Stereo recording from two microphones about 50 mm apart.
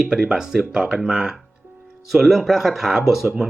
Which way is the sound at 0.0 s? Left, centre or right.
Centre.